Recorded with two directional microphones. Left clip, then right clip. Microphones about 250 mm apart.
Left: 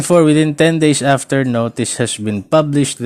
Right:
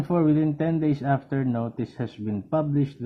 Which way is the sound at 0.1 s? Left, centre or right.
Left.